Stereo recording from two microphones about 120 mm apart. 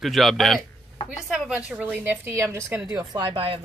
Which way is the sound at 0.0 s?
Centre (ahead or behind).